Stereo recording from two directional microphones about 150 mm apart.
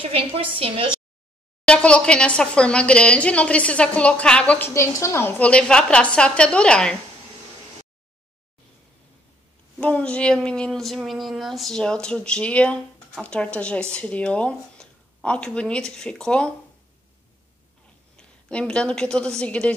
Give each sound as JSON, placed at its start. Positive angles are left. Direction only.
{"t": 0.0, "sound": "a woman's voice", "side_deg": -40}
{"t": 1.7, "sound": "a woman's voice", "side_deg": 5}
{"t": 9.8, "sound": "speech", "side_deg": 10}
{"t": 18.1, "sound": "a woman's voice", "side_deg": 5}